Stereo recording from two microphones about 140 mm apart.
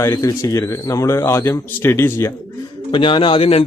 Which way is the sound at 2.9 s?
35° left (ahead or behind).